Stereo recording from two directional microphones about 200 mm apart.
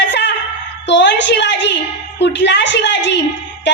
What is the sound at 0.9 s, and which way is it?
A woman's voice, 60° left (ahead or behind).